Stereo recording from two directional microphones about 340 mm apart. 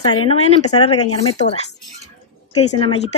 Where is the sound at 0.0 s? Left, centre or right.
Centre.